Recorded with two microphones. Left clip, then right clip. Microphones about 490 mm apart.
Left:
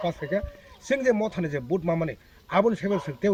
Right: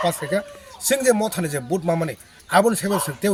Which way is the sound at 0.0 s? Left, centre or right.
Left.